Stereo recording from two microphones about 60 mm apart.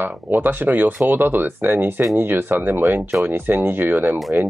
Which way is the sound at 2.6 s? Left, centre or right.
Right.